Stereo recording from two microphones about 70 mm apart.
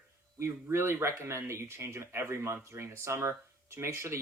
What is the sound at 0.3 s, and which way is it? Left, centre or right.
Speech, right.